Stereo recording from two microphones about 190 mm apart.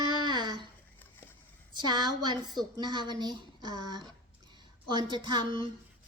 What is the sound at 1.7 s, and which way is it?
Speech, 25° right (ahead or behind).